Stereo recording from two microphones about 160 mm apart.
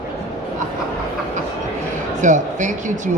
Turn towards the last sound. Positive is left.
turn(degrees=-50)  # may be behind; listen again after turning